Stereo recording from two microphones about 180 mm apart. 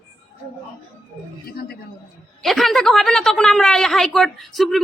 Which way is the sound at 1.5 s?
60° left (ahead or behind).